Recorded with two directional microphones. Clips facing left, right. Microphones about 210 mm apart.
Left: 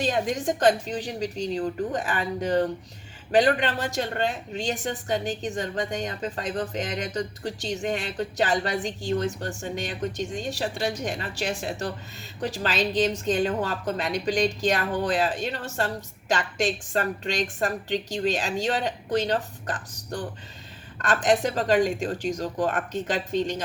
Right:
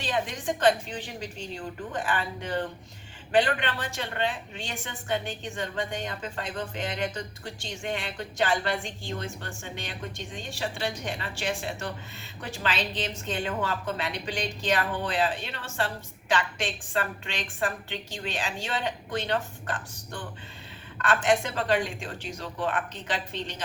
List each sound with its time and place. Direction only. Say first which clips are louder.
0.0 s a woman's voice: left 5 dB; 40° left (ahead or behind)